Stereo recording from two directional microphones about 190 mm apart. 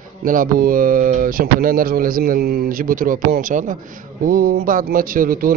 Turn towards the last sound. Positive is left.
turn(degrees=-50)  # may be behind; listen again after turning